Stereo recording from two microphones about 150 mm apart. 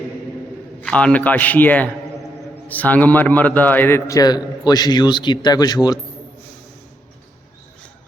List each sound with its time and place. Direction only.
0.8 s a man's voice: 10° left (ahead or behind); by 6.0 s 25° left (ahead or behind)